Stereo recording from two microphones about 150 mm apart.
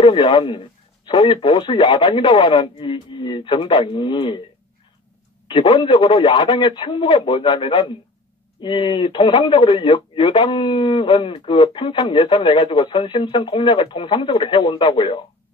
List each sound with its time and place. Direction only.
0.0 s speech: 30° left (ahead or behind)
5.5 s speech: 35° left (ahead or behind)